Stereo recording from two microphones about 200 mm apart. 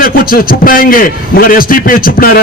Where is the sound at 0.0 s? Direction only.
45° left (ahead or behind).